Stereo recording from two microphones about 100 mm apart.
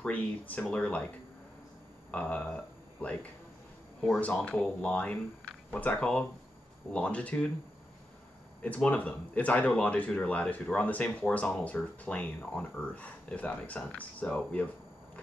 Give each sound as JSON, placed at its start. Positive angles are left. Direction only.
{"t": 0.0, "sound": "speech", "side_deg": 15}
{"t": 2.0, "sound": "speech", "side_deg": 15}
{"t": 8.6, "sound": "speech", "side_deg": 15}